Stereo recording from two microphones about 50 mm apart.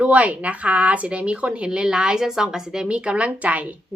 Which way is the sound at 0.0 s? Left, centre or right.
Right.